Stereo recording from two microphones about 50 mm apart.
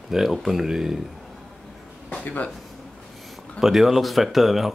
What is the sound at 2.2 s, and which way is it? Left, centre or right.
Speech, left.